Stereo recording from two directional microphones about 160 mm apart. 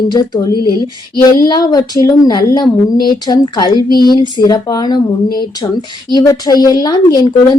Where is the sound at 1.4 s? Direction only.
25° left (ahead or behind).